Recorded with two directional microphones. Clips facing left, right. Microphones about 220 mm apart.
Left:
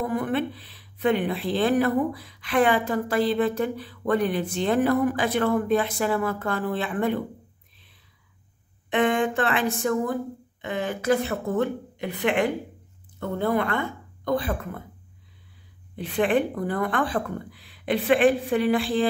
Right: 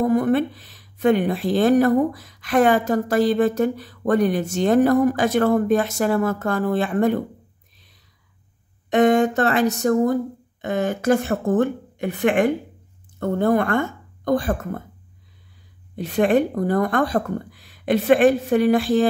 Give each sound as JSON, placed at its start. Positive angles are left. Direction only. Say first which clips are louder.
{"t": 0.0, "sound": "speech", "louder": "right 7 dB", "side_deg": -40}
{"t": 8.9, "sound": "speech", "louder": "right 6 dB", "side_deg": -40}
{"t": 16.0, "sound": "speech", "louder": "right 5 dB", "side_deg": -40}